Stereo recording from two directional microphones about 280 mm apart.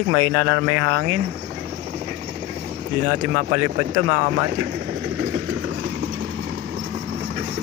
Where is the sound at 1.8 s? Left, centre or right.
Right.